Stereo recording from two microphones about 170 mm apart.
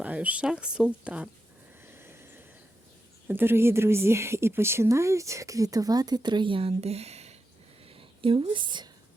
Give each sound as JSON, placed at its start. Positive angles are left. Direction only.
{"t": 0.0, "sound": "speech", "side_deg": -10}
{"t": 1.8, "sound": "a sound", "side_deg": -15}
{"t": 3.2, "sound": "a woman's voice", "side_deg": -10}